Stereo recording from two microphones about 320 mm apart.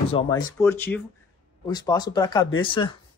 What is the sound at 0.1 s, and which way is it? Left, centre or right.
Speech, centre.